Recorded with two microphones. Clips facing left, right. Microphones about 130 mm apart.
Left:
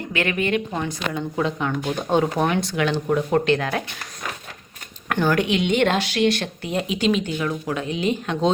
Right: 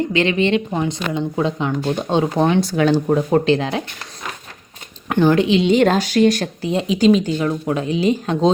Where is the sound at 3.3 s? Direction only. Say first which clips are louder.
Right 3 dB; 25° right (ahead or behind).